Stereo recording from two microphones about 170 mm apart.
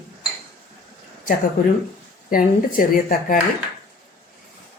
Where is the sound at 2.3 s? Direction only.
55° left (ahead or behind).